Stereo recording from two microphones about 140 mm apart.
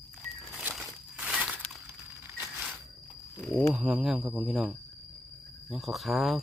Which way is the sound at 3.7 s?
5° right (ahead or behind).